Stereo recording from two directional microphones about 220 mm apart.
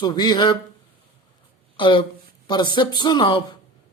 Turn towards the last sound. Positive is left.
turn(degrees=20)  # may be behind; listen again after turning